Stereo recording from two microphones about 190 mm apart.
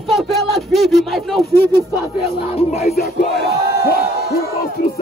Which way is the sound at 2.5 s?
35° left (ahead or behind).